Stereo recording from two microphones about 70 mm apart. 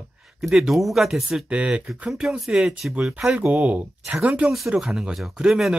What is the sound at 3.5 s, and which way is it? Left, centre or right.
Speech, right.